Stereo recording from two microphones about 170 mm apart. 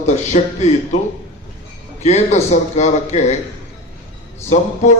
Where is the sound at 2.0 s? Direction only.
40° left (ahead or behind).